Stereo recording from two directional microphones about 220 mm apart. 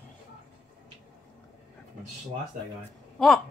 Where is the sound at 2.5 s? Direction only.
40° right (ahead or behind).